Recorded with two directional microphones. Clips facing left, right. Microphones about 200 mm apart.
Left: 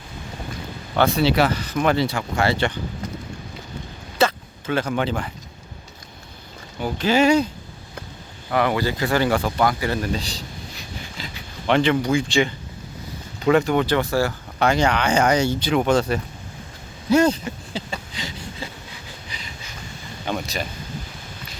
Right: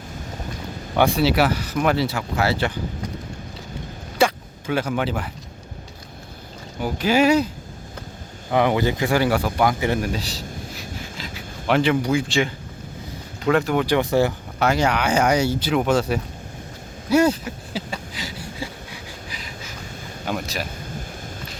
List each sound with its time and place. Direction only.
0.9 s speech: 10° right (ahead or behind)
4.2 s a sound: 10° right (ahead or behind)
6.8 s speech: 10° right (ahead or behind)
13.8 s speech: 15° right (ahead or behind)
14.6 s speech: 5° right (ahead or behind)
17.1 s a sound: 10° right (ahead or behind)
20.2 s speech: 5° right (ahead or behind)